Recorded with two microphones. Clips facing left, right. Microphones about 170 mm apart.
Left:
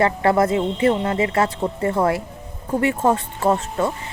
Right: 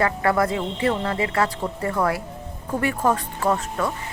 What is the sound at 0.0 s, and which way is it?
Speech, 25° left (ahead or behind).